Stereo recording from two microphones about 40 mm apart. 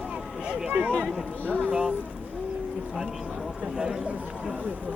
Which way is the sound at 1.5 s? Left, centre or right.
Left.